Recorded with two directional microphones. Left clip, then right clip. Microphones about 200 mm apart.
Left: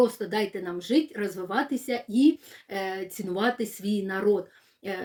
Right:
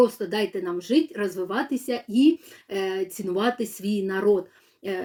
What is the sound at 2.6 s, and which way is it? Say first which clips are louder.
Speech: right 4 dB; 15° left (ahead or behind).